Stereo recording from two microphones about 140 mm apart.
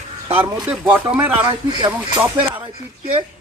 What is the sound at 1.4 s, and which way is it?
Speech, 30° right (ahead or behind).